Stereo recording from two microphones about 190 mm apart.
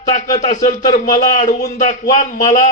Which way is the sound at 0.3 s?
40° left (ahead or behind).